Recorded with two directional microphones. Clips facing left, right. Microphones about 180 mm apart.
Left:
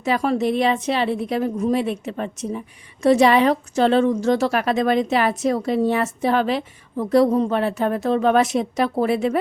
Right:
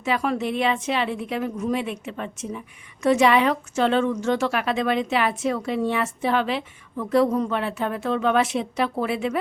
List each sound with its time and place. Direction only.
0.0 s a woman's voice: 35° left (ahead or behind)